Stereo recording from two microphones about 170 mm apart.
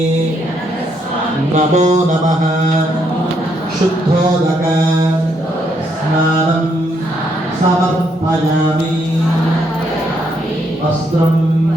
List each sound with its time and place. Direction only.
1.5 s mantra: 45° right (ahead or behind)